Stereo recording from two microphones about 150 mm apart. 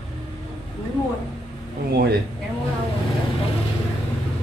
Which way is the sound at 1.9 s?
90° right.